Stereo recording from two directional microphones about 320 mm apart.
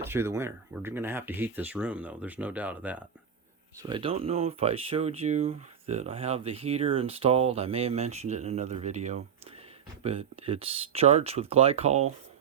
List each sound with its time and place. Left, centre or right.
0.0 s speech: centre
3.8 s speech: centre